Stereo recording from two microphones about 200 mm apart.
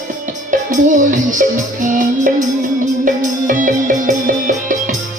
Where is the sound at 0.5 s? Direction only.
40° right (ahead or behind).